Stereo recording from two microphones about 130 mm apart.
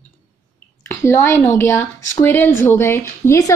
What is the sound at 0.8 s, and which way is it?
A woman's voice, 20° left (ahead or behind).